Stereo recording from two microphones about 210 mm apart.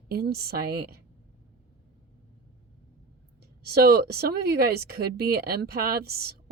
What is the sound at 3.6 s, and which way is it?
Speech, 50° right (ahead or behind).